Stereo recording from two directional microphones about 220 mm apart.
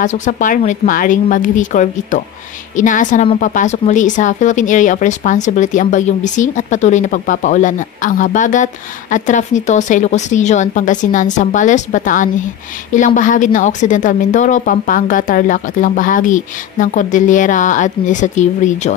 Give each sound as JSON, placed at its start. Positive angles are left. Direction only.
{"t": 0.0, "sound": "a woman's voice", "side_deg": 35}